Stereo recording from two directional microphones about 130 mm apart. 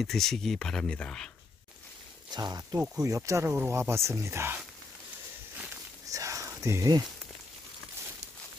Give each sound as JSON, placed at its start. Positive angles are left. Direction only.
{"t": 0.0, "sound": "speech", "side_deg": 5}
{"t": 2.3, "sound": "speech", "side_deg": -30}
{"t": 6.0, "sound": "a sound", "side_deg": -25}